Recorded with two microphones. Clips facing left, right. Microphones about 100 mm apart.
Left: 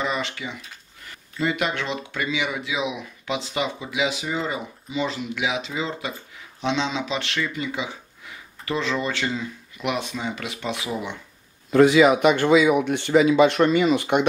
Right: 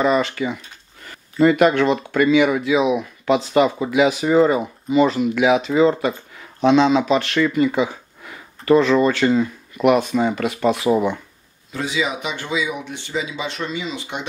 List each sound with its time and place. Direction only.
0.0 s speech: 45° right (ahead or behind)
11.7 s speech: 60° left (ahead or behind)